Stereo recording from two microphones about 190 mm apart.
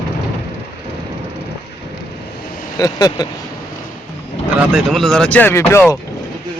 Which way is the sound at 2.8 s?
20° left (ahead or behind).